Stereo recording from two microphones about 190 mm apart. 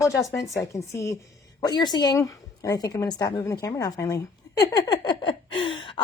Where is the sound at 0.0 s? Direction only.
15° left (ahead or behind).